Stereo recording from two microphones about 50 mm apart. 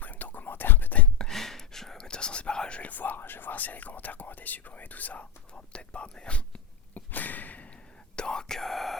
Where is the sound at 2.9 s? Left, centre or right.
Left.